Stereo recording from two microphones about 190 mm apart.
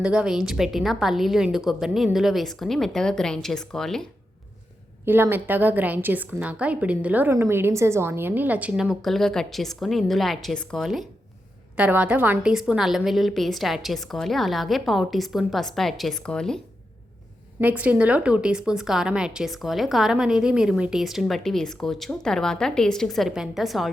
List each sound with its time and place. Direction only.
0.0 s a woman's voice: 5° right (ahead or behind)
5.0 s a woman's voice: 10° right (ahead or behind)
17.6 s a woman's voice: 10° right (ahead or behind)